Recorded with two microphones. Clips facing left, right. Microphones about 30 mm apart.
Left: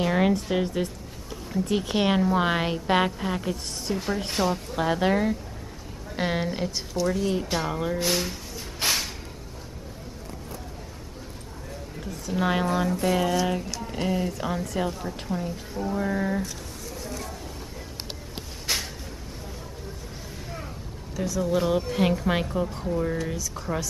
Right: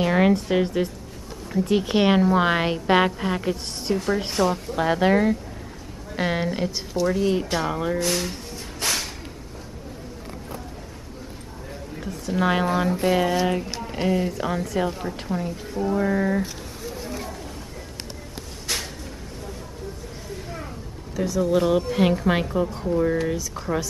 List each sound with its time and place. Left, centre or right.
0.0 s a woman's voice: centre
8.0 s speech: centre
8.8 s a sound: centre
12.3 s a woman's voice: centre
18.7 s a sound: centre
21.2 s a woman's voice: centre